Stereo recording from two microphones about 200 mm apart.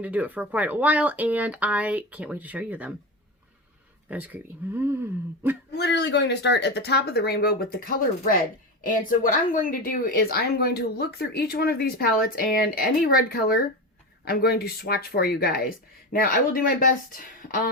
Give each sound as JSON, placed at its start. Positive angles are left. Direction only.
{"t": 0.0, "sound": "speech", "side_deg": -5}
{"t": 4.1, "sound": "speech", "side_deg": -10}
{"t": 5.7, "sound": "speech", "side_deg": 60}